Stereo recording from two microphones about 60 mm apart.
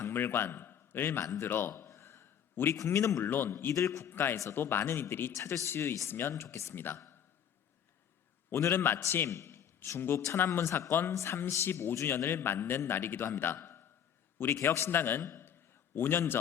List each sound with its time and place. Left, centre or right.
0.1 s a man's voice: left
1.9 s a sound: left
2.7 s a man's voice: left
3.2 s a man's voice: left
3.8 s speech: left
4.1 s a man's voice: left
5.3 s speech: left
6.7 s a man's voice: left
8.7 s a man's voice: left
9.2 s a sound: left
10.0 s a man's voice: left
15.2 s a sound: left
16.0 s a man's voice: left